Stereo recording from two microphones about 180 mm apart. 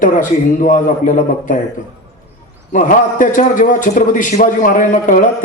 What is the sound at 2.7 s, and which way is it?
A man's voice, 45° left (ahead or behind).